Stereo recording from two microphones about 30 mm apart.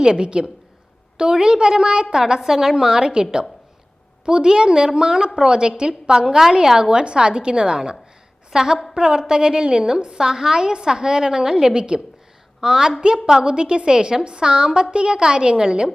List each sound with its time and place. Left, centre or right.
0.0 s a woman's voice: right
2.4 s a woman's voice: centre
2.8 s a woman's voice: right
4.3 s a woman's voice: right
6.7 s a woman's voice: right
8.5 s a woman's voice: right
11.7 s a woman's voice: right